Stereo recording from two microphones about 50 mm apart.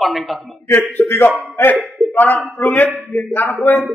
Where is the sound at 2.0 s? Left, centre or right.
Left.